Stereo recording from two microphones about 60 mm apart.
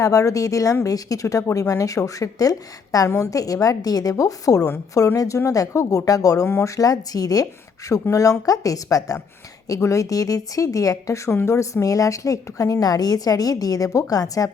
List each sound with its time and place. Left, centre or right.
0.0 s a woman's voice: left
0.9 s a woman's voice: left
3.2 s a woman's voice: left
4.2 s a woman's voice: left
5.5 s a woman's voice: left
8.1 s a woman's voice: left
9.8 s a woman's voice: left